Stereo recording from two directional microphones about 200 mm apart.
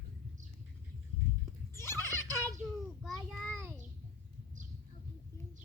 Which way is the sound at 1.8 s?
10° left (ahead or behind).